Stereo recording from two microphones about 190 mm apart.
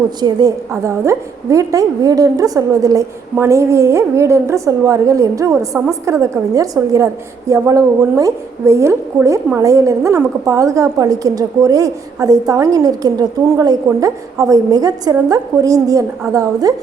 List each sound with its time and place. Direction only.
0.2 s a woman's voice: 20° right (ahead or behind)